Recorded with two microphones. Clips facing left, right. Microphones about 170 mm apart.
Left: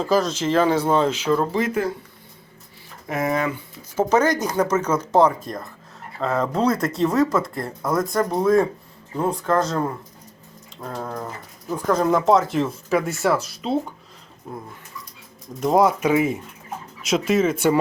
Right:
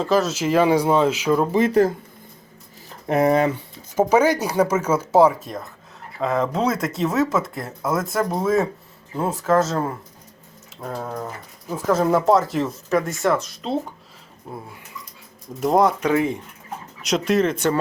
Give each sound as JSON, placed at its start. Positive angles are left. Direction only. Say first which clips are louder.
{"t": 0.0, "sound": "speech", "louder": "right 1 dB", "side_deg": 0}
{"t": 1.6, "sound": "speech", "louder": "right 7 dB", "side_deg": -35}
{"t": 3.1, "sound": "speech", "louder": "right 6 dB", "side_deg": -35}
{"t": 3.9, "sound": "speech", "louder": "right 2 dB", "side_deg": -10}
{"t": 15.6, "sound": "speech", "louder": "even", "side_deg": 0}